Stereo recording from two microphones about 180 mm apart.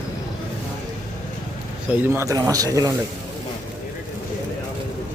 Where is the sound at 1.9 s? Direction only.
10° right (ahead or behind).